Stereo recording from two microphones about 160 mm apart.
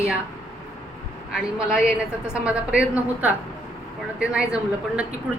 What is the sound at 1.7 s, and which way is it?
Speech, 5° right (ahead or behind).